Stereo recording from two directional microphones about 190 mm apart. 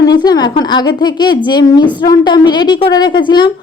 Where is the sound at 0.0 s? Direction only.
20° left (ahead or behind).